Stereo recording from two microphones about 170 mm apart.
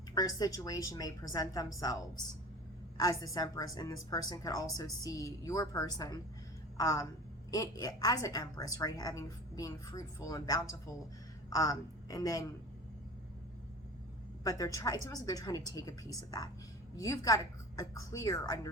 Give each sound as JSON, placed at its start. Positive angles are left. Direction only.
{"t": 0.1, "sound": "a woman's voice", "side_deg": 20}
{"t": 14.4, "sound": "a woman's voice", "side_deg": 20}